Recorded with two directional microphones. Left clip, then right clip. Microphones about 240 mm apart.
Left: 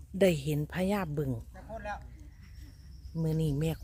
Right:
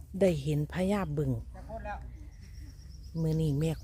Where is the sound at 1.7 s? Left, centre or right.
Left.